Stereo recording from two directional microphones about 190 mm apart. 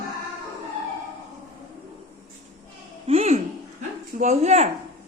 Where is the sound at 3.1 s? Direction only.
30° right (ahead or behind).